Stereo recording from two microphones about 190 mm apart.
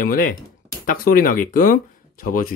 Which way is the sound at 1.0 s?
50° left (ahead or behind).